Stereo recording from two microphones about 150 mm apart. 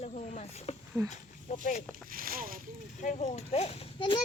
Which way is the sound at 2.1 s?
75° right (ahead or behind).